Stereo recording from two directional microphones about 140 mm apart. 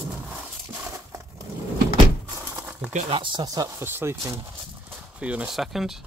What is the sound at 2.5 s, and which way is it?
Crumpling, 10° right (ahead or behind).